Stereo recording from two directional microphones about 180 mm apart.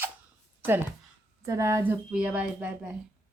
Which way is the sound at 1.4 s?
15° right (ahead or behind).